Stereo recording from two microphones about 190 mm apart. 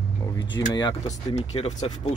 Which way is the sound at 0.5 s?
20° left (ahead or behind).